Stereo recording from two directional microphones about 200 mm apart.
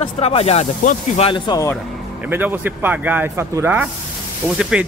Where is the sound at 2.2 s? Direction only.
10° right (ahead or behind).